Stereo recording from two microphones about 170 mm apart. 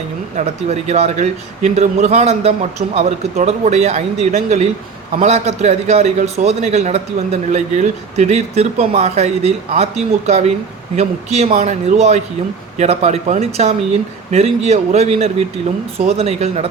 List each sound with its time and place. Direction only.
0.3 s a man's voice: 40° right (ahead or behind)